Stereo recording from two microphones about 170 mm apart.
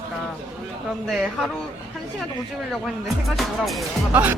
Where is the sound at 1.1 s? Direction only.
Centre (ahead or behind).